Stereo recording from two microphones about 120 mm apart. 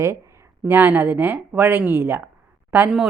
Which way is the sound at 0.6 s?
15° right (ahead or behind).